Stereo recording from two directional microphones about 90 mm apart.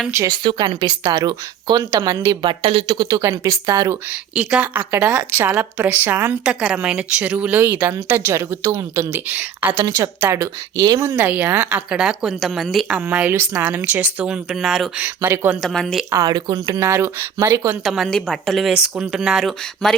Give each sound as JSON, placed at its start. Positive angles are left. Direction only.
{"t": 0.3, "sound": "a woman's voice", "side_deg": -50}
{"t": 2.3, "sound": "a woman's voice", "side_deg": -60}
{"t": 3.1, "sound": "speech", "side_deg": -40}
{"t": 4.1, "sound": "a woman's voice", "side_deg": -15}
{"t": 6.4, "sound": "a woman's voice", "side_deg": -10}
{"t": 9.3, "sound": "speech", "side_deg": -20}
{"t": 10.2, "sound": "a woman's voice", "side_deg": -30}
{"t": 11.7, "sound": "speech", "side_deg": -10}
{"t": 13.0, "sound": "a woman's voice", "side_deg": -20}
{"t": 14.5, "sound": "speech", "side_deg": -5}
{"t": 15.0, "sound": "a woman's voice", "side_deg": -25}
{"t": 15.6, "sound": "speech", "side_deg": 5}
{"t": 16.2, "sound": "speech", "side_deg": -50}
{"t": 17.8, "sound": "speech", "side_deg": 0}